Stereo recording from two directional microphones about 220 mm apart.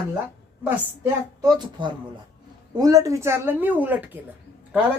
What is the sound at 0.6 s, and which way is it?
A woman's voice, 15° right (ahead or behind).